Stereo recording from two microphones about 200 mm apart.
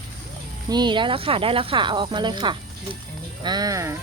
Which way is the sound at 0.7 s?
20° right (ahead or behind).